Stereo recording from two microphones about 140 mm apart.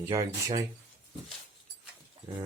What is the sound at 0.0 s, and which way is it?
Speech, 20° right (ahead or behind).